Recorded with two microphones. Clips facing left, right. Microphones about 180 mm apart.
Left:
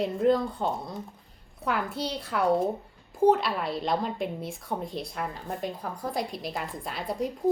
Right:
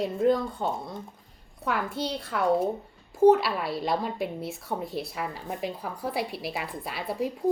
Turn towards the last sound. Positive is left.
turn(degrees=-5)  # may be behind; listen again after turning